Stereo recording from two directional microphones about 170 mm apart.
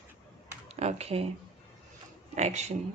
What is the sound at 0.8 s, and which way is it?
Speech, 40° right (ahead or behind).